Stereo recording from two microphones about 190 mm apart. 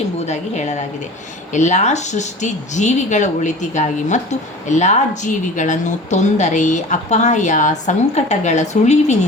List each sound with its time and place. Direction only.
0.3 s speech: 35° left (ahead or behind)